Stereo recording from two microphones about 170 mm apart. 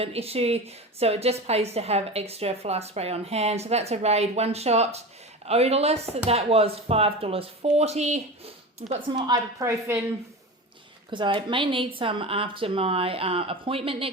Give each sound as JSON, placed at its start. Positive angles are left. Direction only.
{"t": 0.0, "sound": "a woman's voice", "side_deg": -35}
{"t": 8.9, "sound": "a woman's voice", "side_deg": -30}
{"t": 11.1, "sound": "a woman's voice", "side_deg": -30}